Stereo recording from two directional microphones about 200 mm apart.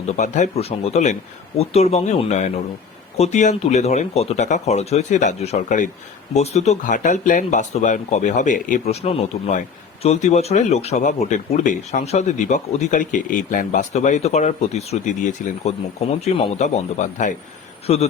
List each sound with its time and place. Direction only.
0.0 s speech: 35° left (ahead or behind)